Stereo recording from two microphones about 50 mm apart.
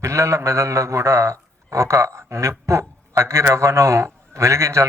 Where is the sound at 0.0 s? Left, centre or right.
Right.